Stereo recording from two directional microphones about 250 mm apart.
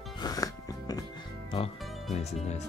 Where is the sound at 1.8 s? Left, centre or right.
Centre.